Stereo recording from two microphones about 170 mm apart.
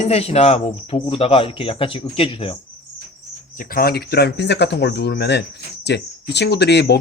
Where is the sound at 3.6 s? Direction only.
60° left (ahead or behind).